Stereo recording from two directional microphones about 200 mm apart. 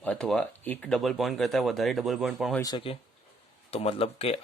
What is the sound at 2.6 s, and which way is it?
Speech, 25° left (ahead or behind).